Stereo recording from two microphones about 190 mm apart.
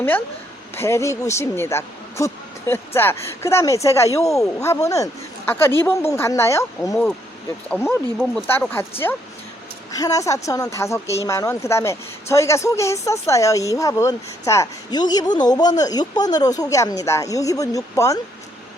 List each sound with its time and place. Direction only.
0.8 s speech: 15° left (ahead or behind)